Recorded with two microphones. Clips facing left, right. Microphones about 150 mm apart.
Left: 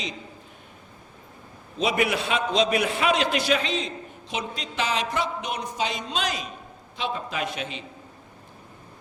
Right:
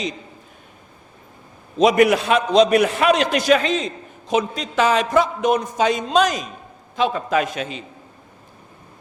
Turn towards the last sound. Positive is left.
turn(degrees=-45)  # may be behind; listen again after turning